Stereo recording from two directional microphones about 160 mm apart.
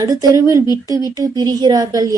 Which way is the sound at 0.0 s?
20° right (ahead or behind).